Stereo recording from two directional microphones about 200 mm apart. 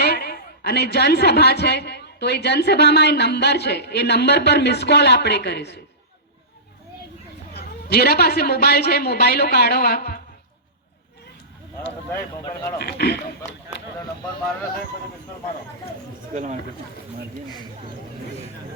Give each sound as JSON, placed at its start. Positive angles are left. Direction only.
{"t": 0.0, "sound": "a woman's voice", "side_deg": 50}
{"t": 7.5, "sound": "a woman's voice", "side_deg": 55}
{"t": 12.1, "sound": "speech", "side_deg": 15}
{"t": 12.8, "sound": "a woman's voice", "side_deg": 55}
{"t": 16.3, "sound": "speech", "side_deg": -35}